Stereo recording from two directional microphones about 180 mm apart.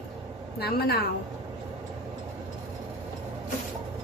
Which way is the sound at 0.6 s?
60° left (ahead or behind).